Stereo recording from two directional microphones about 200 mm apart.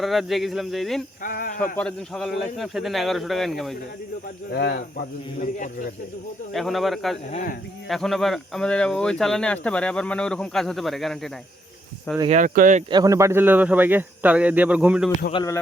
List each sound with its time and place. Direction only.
0.0 s speech: centre (ahead or behind)
1.2 s speech: 45° left (ahead or behind)
1.7 s speech: 5° left (ahead or behind)
4.5 s speech: 50° left (ahead or behind)
6.5 s speech: centre (ahead or behind)
7.3 s speech: 35° left (ahead or behind)
7.9 s speech: centre (ahead or behind)
12.3 s speech: 40° right (ahead or behind)
12.9 s speech: 20° right (ahead or behind)
15.3 s speech: 20° left (ahead or behind)